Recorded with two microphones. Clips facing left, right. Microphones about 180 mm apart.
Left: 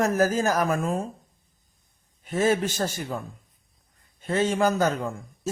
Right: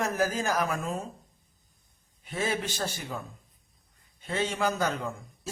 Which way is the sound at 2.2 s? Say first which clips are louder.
Left 8 dB; 45° left (ahead or behind).